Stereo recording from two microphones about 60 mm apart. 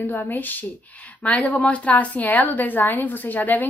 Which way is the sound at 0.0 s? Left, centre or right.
Left.